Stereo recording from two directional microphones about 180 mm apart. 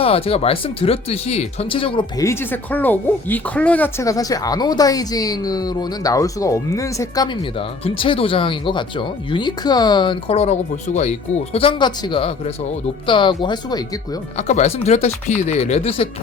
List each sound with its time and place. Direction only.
0.0 s speech: 35° left (ahead or behind); by 7.3 s 15° left (ahead or behind)
7.9 s speech: 30° left (ahead or behind)
11.5 s speech: 30° left (ahead or behind)
14.3 s speech: 40° left (ahead or behind)